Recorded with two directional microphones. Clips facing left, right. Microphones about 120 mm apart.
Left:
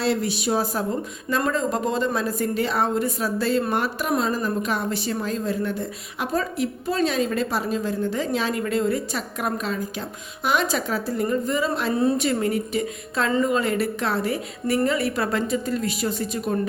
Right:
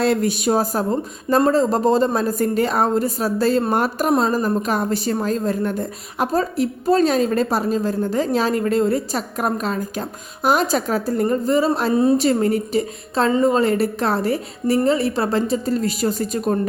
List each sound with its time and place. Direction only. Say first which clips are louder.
0.0 s a woman's voice: right 5 dB; 50° right (ahead or behind)